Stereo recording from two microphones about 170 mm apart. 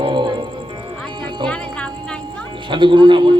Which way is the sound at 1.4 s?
5° left (ahead or behind).